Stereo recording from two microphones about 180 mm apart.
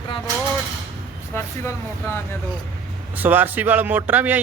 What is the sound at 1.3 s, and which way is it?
Speech, 15° left (ahead or behind).